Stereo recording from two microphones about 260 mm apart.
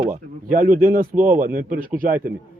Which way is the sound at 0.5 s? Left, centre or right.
Right.